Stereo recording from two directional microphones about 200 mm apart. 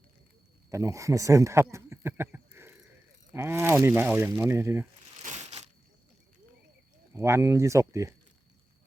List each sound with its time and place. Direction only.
0.7 s speech: 15° right (ahead or behind)
5.2 s a sound: 35° right (ahead or behind)
7.2 s speech: 15° right (ahead or behind)